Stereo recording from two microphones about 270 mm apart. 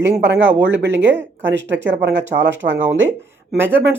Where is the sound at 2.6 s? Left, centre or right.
Right.